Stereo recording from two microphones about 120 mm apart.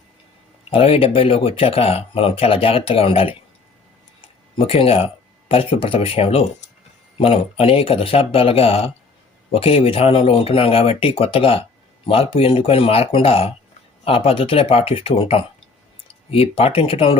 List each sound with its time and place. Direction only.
0.7 s speech: 50° left (ahead or behind)
4.5 s speech: 50° left (ahead or behind)